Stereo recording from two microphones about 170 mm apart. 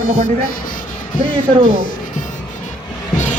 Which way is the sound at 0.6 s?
55° left (ahead or behind).